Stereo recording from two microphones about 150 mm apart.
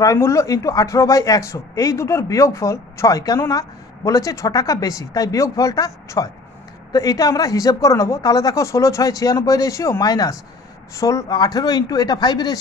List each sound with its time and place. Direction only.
0.0 s speech: 20° left (ahead or behind)